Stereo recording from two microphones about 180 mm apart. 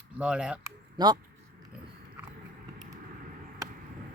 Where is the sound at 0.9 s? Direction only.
20° right (ahead or behind).